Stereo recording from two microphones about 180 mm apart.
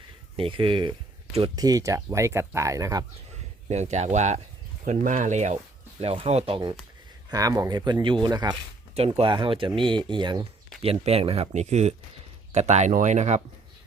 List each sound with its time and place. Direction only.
0.3 s speech: 30° right (ahead or behind)
3.7 s speech: 40° right (ahead or behind)